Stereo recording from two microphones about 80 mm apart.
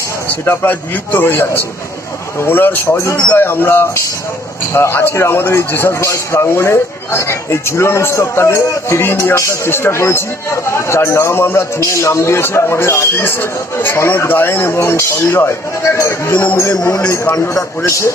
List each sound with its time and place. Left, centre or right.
0.3 s a man's voice: left
16.7 s a man's voice: left